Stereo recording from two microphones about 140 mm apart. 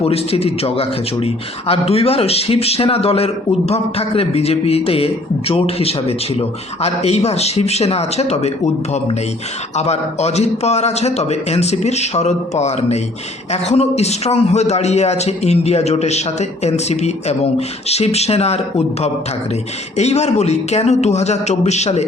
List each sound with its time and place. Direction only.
0.0 s speech: 45° left (ahead or behind)
20.0 s speech: 50° left (ahead or behind)